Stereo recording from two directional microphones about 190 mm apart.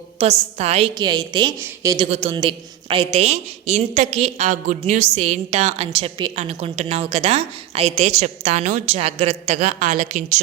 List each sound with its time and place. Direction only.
0.2 s a woman's voice: 35° right (ahead or behind); by 2.0 s 15° right (ahead or behind)
2.0 s a woman's voice: 35° right (ahead or behind)